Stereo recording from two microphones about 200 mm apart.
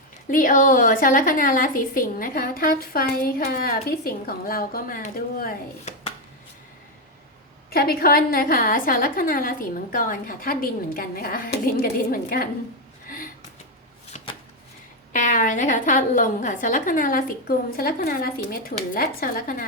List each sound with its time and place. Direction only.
0.3 s a woman's voice: 40° left (ahead or behind)
7.7 s a woman's voice: 50° left (ahead or behind)
13.1 s a sound: 45° left (ahead or behind)
15.1 s a woman's voice: 40° left (ahead or behind)